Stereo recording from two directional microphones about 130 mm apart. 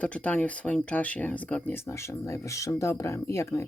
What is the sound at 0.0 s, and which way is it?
Speech, 10° left (ahead or behind).